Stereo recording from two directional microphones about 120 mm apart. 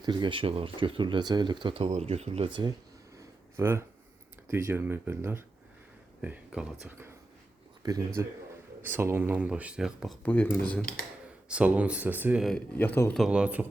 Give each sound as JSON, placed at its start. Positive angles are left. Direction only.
{"t": 0.0, "sound": "speech", "side_deg": -40}
{"t": 1.8, "sound": "speech", "side_deg": -65}
{"t": 2.5, "sound": "speech", "side_deg": -40}
{"t": 3.6, "sound": "speech", "side_deg": -20}
{"t": 6.2, "sound": "speech", "side_deg": -10}
{"t": 7.9, "sound": "speech", "side_deg": -30}
{"t": 10.2, "sound": "speech", "side_deg": 15}
{"t": 11.4, "sound": "speech", "side_deg": -10}
{"t": 12.7, "sound": "speech", "side_deg": 15}
{"t": 13.1, "sound": "speech", "side_deg": -5}